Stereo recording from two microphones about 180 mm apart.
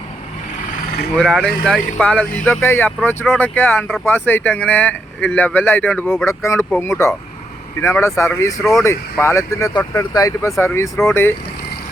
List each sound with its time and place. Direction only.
1.1 s speech: 5° left (ahead or behind)